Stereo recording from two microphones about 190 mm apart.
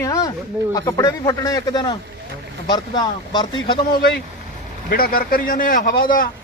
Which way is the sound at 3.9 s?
55° left (ahead or behind).